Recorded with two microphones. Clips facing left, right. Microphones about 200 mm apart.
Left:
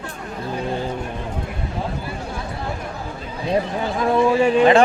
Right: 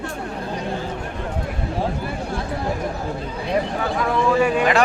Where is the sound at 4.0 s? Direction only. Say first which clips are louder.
Left 3 dB; 25° left (ahead or behind).